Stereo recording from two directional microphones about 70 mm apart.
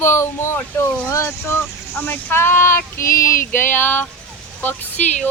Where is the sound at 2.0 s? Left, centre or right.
Left.